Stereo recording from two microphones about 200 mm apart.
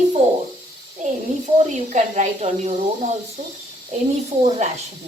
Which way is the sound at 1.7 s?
35° right (ahead or behind).